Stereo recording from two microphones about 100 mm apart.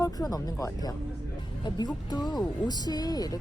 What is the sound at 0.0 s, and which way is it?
Speech, 35° left (ahead or behind).